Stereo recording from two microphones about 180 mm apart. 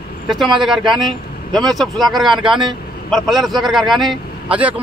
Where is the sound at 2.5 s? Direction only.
25° right (ahead or behind).